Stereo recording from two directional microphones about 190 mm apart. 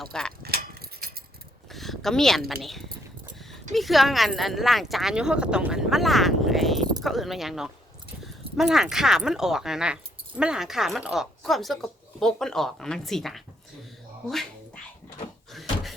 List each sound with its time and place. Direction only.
0.0 s speech: 5° left (ahead or behind)
0.4 s keys jangling: 55° right (ahead or behind)
1.7 s a sound: centre (ahead or behind)
2.5 s speech: centre (ahead or behind)
15.5 s cupboard open or close: centre (ahead or behind)